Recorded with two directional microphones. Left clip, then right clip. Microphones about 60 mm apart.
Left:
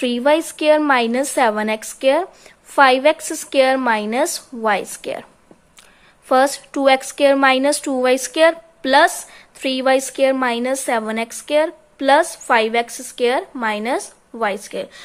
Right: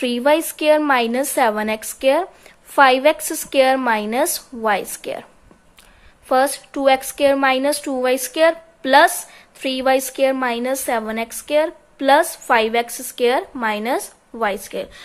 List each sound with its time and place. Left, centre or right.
0.0 s a woman's voice: left
5.0 s a woman's voice: left